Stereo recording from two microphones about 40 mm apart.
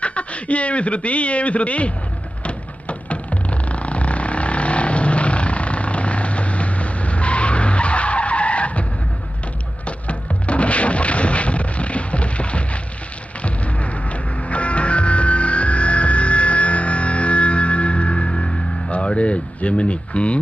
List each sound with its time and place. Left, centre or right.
0.0 s speech: left
2.4 s music: left
18.9 s a sound: left